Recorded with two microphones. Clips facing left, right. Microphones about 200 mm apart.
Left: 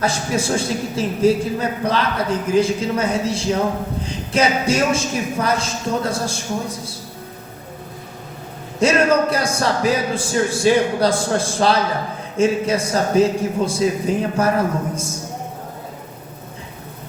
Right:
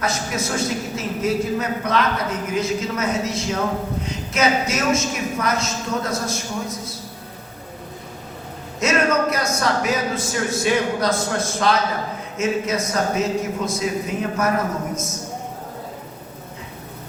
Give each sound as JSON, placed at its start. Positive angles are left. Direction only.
{"t": 0.0, "sound": "a man's voice", "side_deg": 30}
{"t": 8.8, "sound": "a man's voice", "side_deg": 30}